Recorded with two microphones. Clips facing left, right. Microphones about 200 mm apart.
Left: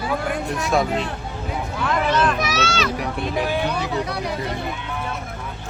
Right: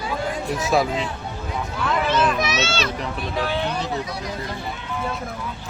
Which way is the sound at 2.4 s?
20° right (ahead or behind).